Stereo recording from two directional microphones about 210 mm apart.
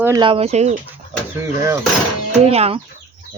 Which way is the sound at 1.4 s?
15° right (ahead or behind).